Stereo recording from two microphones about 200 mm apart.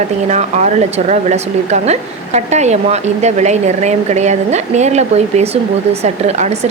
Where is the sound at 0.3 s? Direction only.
35° right (ahead or behind).